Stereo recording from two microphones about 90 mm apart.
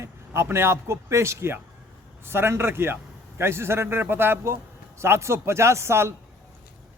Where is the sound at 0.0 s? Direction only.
30° right (ahead or behind).